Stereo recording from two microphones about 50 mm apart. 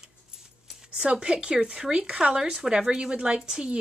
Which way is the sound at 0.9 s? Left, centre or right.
Centre.